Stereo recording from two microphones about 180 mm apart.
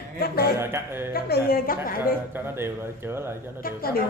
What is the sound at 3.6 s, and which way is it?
Speech, 55° left (ahead or behind).